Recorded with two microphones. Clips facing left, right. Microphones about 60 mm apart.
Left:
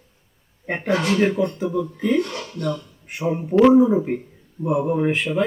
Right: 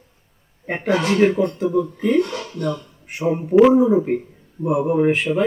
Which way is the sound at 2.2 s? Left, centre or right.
Right.